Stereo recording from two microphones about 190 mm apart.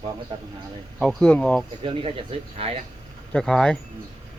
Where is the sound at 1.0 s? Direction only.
5° left (ahead or behind).